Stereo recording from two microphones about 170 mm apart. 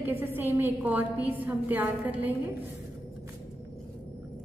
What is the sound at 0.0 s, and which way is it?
A woman's voice, 10° right (ahead or behind).